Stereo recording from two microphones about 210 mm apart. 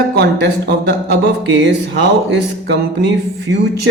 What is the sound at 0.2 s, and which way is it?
Speech, 55° right (ahead or behind).